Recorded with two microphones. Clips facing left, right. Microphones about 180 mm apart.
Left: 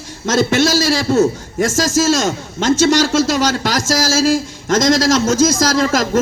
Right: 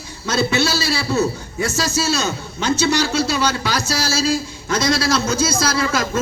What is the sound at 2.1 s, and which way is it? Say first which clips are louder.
A man's voice: left 5 dB; 90° left.